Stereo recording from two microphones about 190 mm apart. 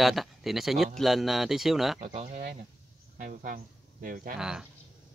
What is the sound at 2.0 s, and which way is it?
Speech, 35° right (ahead or behind).